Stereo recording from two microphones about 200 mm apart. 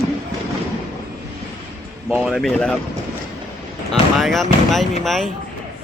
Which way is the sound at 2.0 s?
Centre (ahead or behind).